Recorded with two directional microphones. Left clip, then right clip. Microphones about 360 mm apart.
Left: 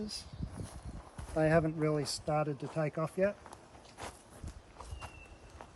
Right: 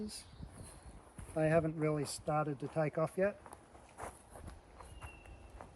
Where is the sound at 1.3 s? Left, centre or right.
Centre.